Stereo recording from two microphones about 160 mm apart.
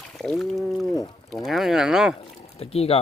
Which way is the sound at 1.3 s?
Centre (ahead or behind).